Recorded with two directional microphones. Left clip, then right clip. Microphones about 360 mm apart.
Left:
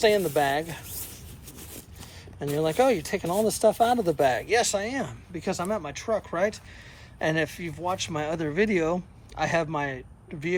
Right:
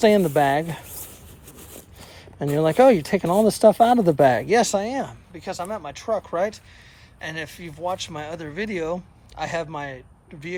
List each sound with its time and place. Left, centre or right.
0.0 s speech: centre
2.6 s speech: right; by 10.0 s centre